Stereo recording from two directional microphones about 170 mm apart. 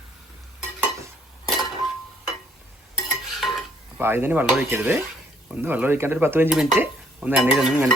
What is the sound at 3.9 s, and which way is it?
Cutlery, 10° right (ahead or behind).